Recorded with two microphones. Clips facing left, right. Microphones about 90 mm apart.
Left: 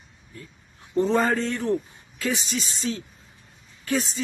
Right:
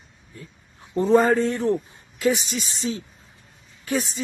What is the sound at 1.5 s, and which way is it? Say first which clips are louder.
Speech: right 2 dB; 20° right (ahead or behind).